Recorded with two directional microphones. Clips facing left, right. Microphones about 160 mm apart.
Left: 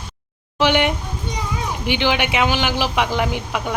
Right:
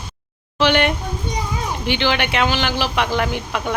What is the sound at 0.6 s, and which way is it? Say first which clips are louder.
Speech: even; 15° left (ahead or behind).